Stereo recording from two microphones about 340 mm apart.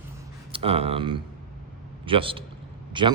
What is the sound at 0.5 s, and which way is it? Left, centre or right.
A man's voice, centre.